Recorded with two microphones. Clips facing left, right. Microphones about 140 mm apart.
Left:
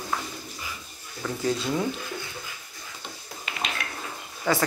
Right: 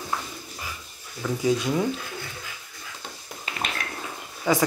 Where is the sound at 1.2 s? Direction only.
10° right (ahead or behind).